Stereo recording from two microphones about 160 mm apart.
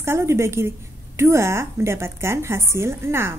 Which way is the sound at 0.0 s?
15° right (ahead or behind).